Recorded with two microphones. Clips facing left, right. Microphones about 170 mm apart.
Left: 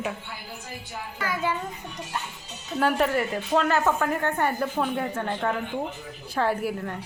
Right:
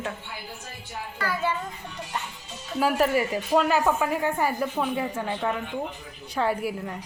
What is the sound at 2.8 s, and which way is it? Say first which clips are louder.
A woman's voice: right 1 dB; 5° right (ahead or behind).